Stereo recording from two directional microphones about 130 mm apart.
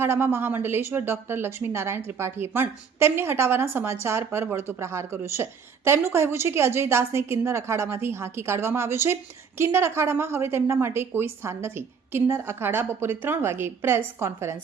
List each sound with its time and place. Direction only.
0.0 s a woman's voice: 15° right (ahead or behind)